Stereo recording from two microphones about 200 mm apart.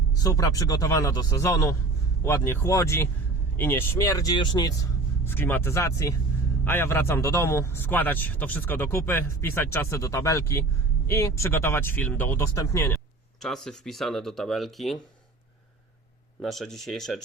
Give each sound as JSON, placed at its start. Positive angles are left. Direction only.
{"t": 0.2, "sound": "a man's voice", "side_deg": 15}
{"t": 13.4, "sound": "speech", "side_deg": 0}
{"t": 16.4, "sound": "speech", "side_deg": 0}